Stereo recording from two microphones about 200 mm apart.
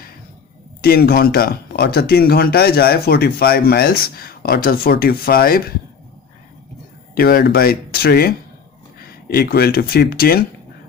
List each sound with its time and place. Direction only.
0.7 s speech: 50° left (ahead or behind)
7.2 s speech: 50° left (ahead or behind)